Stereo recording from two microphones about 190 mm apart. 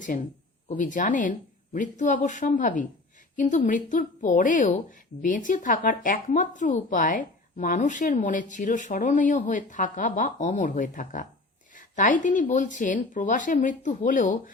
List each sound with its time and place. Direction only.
0.1 s a woman's voice: 40° left (ahead or behind)